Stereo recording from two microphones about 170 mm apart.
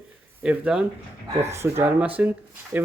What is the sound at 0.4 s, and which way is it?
Speech, 5° right (ahead or behind).